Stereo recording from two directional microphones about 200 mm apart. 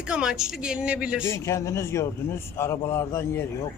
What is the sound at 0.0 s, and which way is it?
Speech, 5° right (ahead or behind).